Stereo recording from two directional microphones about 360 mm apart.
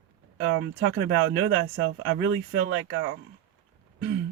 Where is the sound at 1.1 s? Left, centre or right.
Right.